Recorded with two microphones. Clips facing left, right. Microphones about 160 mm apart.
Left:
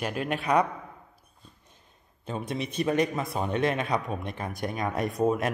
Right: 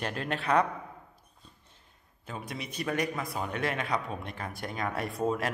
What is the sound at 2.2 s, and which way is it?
Speech, 25° left (ahead or behind).